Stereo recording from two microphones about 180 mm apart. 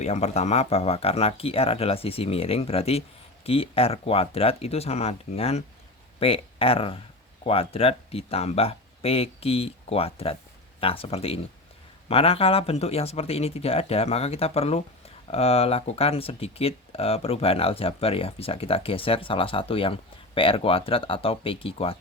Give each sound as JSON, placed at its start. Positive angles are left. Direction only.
{"t": 0.0, "sound": "speech", "side_deg": 40}